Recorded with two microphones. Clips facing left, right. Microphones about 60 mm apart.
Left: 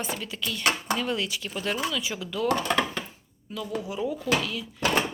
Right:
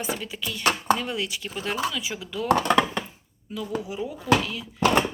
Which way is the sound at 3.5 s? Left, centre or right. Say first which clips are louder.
Right 1 dB; centre.